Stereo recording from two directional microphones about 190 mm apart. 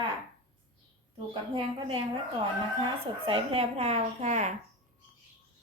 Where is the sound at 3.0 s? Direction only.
30° right (ahead or behind).